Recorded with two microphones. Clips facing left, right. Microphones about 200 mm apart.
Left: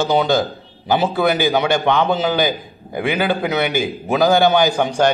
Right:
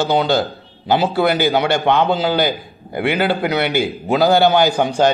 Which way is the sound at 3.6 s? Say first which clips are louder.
Right 1 dB; 15° left (ahead or behind).